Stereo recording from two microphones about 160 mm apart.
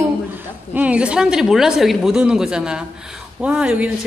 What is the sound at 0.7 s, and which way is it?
A woman's voice, 10° right (ahead or behind).